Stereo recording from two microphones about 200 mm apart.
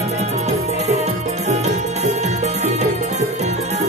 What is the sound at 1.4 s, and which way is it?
Music, 35° right (ahead or behind).